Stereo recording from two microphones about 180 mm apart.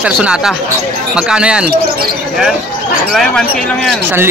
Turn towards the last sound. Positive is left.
turn(degrees=0)  # may be behind; listen again after turning